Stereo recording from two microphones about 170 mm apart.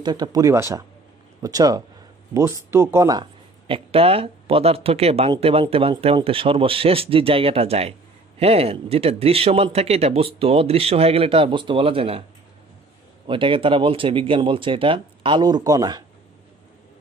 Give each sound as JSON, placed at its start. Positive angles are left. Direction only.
{"t": 0.0, "sound": "speech", "side_deg": -25}
{"t": 13.3, "sound": "speech", "side_deg": -30}